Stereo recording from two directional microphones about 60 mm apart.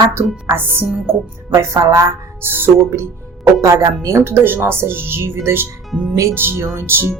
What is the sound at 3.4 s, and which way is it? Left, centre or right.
Speech, right.